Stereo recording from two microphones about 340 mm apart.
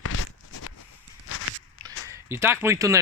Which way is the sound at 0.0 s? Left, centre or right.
Left.